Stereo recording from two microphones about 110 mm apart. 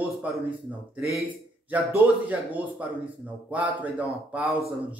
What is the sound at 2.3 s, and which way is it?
A man's voice, 15° right (ahead or behind).